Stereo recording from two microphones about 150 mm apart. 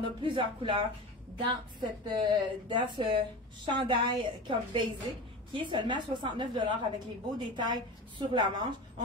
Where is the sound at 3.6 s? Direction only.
30° right (ahead or behind).